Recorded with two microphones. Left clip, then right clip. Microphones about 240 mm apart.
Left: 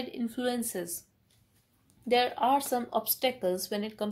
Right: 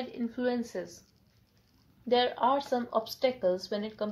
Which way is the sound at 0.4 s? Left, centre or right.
Left.